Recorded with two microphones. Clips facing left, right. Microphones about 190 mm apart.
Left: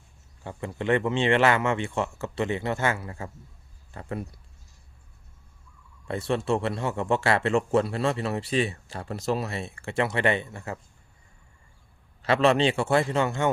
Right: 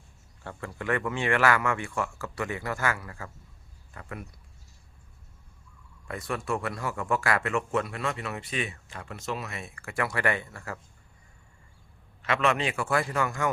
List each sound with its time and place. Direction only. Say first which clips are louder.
0.4 s a man's voice: left 5 dB; 20° left (ahead or behind)
6.1 s a man's voice: left 6 dB; 30° left (ahead or behind)
12.2 s a man's voice: left 6 dB; 30° left (ahead or behind)